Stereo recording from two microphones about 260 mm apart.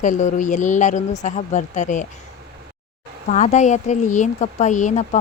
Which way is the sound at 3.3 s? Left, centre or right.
Left.